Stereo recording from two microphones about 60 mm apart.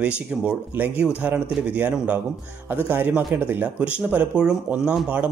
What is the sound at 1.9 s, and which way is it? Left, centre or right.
Speech, centre.